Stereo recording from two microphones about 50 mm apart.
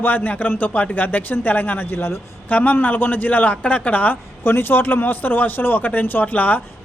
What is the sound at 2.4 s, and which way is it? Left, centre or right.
Speech, left.